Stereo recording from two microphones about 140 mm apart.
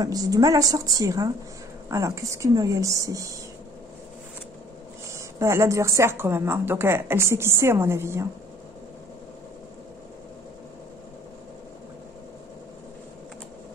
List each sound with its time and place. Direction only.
0.0 s a woman's voice: 25° right (ahead or behind)
5.1 s a woman's voice: 20° right (ahead or behind)